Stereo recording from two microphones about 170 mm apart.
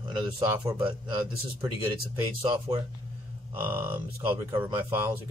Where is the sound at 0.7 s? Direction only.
30° right (ahead or behind).